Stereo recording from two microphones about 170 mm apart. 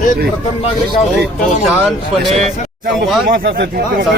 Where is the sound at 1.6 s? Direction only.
Centre (ahead or behind).